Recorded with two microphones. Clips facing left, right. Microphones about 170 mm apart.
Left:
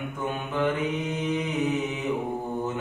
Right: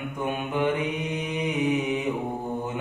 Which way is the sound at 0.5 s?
15° right (ahead or behind).